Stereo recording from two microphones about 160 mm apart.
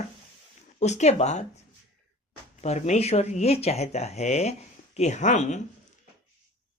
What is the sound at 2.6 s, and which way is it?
Speech, 45° left (ahead or behind).